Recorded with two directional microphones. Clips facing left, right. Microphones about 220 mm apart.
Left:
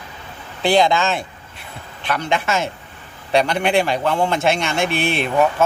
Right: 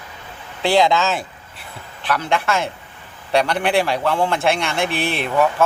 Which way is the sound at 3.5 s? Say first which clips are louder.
Left 1 dB; centre (ahead or behind).